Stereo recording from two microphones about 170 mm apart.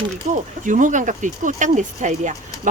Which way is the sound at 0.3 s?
50° right (ahead or behind).